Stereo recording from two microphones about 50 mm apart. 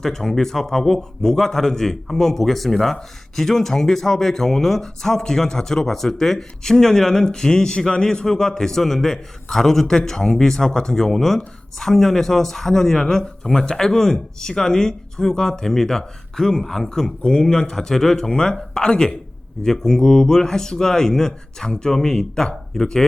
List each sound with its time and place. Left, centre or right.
0.0 s a man's voice: centre